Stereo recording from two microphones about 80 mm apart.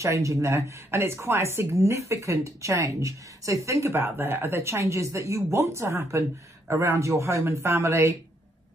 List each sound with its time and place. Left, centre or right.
0.0 s speech: right